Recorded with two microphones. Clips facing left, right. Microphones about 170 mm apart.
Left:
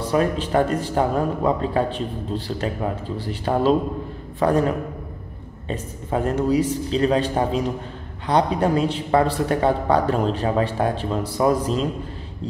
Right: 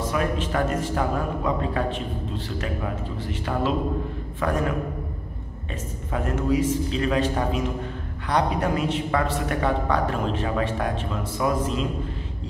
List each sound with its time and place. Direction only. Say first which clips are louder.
0.0 s a man's voice: left 4 dB; 35° left (ahead or behind)